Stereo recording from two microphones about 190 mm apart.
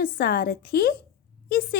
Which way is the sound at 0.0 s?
50° left (ahead or behind).